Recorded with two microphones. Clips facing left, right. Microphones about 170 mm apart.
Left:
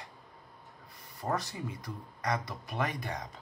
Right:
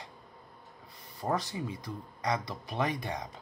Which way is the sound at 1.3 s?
30° right (ahead or behind).